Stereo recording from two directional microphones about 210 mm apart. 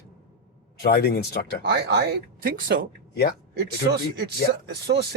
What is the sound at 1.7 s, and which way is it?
Speech, 55° right (ahead or behind).